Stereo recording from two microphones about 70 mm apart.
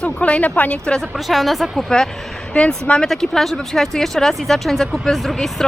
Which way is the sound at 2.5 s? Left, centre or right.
Centre.